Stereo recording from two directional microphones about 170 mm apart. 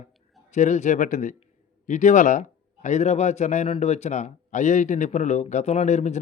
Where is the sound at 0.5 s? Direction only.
45° left (ahead or behind).